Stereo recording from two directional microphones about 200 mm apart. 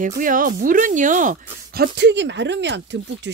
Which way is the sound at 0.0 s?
40° right (ahead or behind).